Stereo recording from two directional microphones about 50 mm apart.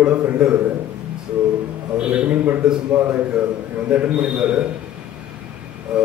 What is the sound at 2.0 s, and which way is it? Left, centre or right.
A man's voice, right.